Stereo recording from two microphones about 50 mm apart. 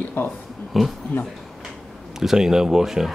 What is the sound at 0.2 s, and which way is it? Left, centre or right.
Speech, left.